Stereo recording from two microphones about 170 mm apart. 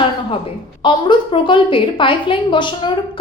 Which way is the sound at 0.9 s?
30° left (ahead or behind).